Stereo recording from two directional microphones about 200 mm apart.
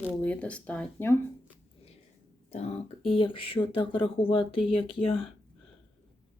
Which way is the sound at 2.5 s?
30° left (ahead or behind).